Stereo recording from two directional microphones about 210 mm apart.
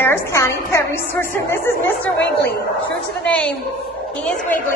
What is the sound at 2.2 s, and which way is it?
Speech, 50° left (ahead or behind).